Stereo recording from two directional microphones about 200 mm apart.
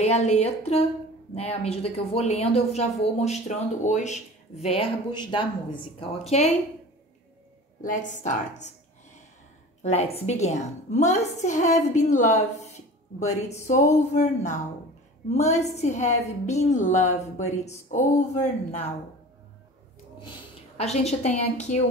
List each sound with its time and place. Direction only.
0.0 s speech: 35° left (ahead or behind)
4.7 s speech: 25° left (ahead or behind)
7.8 s speech: 40° left (ahead or behind)
9.8 s speech: 30° left (ahead or behind)
20.2 s a woman's voice: 30° left (ahead or behind)